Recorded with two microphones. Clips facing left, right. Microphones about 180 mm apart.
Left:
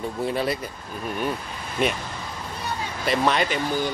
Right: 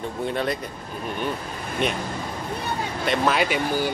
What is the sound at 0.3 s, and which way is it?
Speech, 5° left (ahead or behind).